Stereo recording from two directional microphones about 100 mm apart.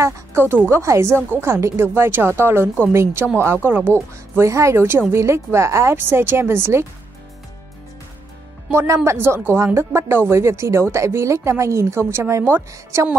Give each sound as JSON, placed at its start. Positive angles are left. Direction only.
{"t": 0.0, "sound": "a woman's voice", "side_deg": -25}
{"t": 4.4, "sound": "a woman's voice", "side_deg": -30}
{"t": 8.7, "sound": "a woman's voice", "side_deg": -30}